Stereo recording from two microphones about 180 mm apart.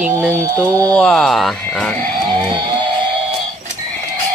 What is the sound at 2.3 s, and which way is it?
Music, 25° right (ahead or behind).